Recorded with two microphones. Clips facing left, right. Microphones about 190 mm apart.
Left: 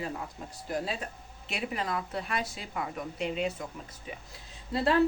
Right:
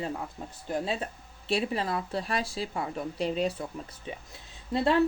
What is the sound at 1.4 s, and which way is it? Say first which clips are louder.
Speech: right 5 dB; 30° right (ahead or behind).